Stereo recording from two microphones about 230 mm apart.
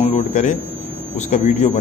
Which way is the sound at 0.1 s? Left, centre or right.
Left.